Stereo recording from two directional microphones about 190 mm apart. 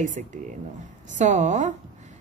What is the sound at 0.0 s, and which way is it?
A woman's voice, 40° right (ahead or behind).